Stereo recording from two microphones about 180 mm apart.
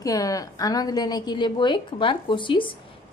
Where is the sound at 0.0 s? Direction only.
20° left (ahead or behind).